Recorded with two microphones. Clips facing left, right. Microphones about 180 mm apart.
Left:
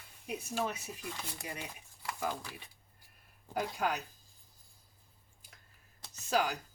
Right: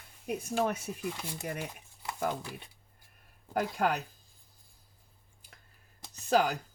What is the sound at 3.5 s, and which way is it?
Speech, 55° right (ahead or behind).